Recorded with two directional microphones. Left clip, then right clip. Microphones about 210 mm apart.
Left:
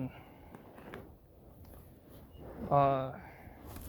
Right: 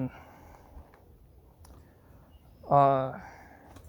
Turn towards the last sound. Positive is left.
turn(degrees=-50)  # may be behind; listen again after turning